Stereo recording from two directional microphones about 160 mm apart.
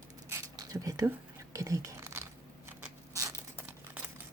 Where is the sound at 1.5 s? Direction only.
20° right (ahead or behind).